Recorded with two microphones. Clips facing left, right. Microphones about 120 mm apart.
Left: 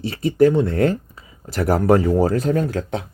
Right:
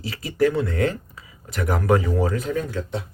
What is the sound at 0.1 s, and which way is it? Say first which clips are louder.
Speech: left 5 dB; 30° left (ahead or behind).